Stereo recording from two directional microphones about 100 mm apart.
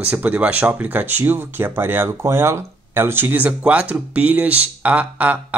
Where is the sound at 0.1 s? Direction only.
15° right (ahead or behind).